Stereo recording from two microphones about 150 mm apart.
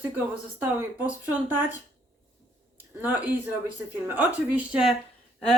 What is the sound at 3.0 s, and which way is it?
Speech, 10° right (ahead or behind).